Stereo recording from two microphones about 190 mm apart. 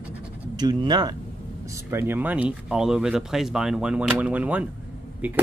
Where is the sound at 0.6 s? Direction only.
20° right (ahead or behind).